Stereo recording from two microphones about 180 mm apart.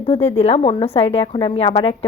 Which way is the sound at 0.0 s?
35° left (ahead or behind).